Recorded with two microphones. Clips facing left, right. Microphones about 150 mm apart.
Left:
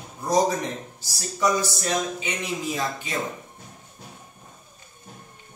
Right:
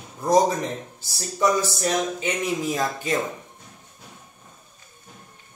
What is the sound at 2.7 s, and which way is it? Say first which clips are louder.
Speech: right 3 dB; 45° right (ahead or behind).